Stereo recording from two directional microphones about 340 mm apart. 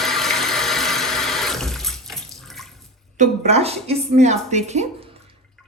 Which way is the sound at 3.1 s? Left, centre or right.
Right.